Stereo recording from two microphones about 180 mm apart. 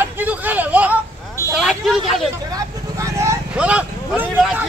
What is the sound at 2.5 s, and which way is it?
Speech, 15° right (ahead or behind).